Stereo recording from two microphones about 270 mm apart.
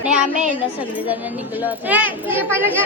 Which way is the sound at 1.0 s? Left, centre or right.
Centre.